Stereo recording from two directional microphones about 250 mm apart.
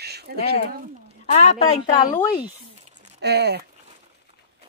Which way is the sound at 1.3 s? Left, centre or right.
Left.